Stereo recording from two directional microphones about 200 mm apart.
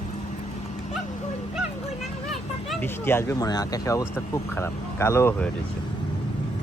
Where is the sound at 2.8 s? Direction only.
10° left (ahead or behind).